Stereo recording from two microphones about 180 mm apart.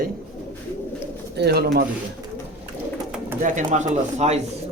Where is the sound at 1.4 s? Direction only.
65° right (ahead or behind).